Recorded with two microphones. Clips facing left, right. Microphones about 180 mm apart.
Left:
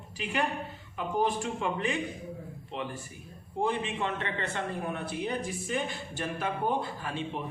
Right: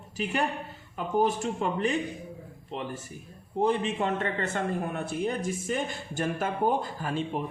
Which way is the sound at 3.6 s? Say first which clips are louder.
Right 4 dB; 40° right (ahead or behind).